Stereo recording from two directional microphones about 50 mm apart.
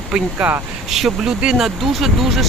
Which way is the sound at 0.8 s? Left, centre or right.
Centre.